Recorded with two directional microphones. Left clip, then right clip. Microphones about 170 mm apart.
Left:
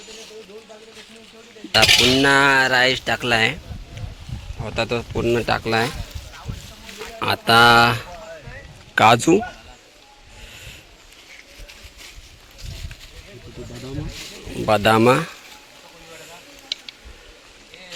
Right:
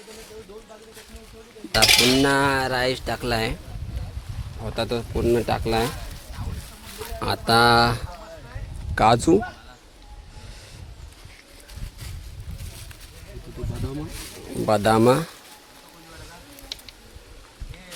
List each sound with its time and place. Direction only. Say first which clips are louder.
1.7 s cutlery: left 3 dB; 25° left (ahead or behind)
2.2 s speech: left 6 dB; centre (ahead or behind)
4.6 s speech: left 3 dB; 5° left (ahead or behind)
7.2 s speech: left 5 dB; centre (ahead or behind)
14.7 s speech: left 3 dB; 5° right (ahead or behind)